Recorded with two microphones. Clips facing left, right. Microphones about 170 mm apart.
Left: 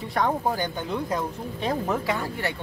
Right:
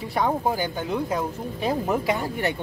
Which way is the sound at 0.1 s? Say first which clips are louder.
Right 1 dB; 5° right (ahead or behind).